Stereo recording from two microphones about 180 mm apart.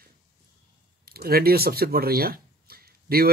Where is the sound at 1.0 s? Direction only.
60° right (ahead or behind).